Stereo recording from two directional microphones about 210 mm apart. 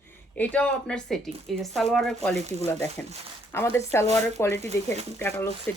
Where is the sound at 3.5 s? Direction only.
10° left (ahead or behind).